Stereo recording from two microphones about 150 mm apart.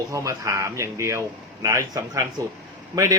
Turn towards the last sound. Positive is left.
turn(degrees=-20)  # may be behind; listen again after turning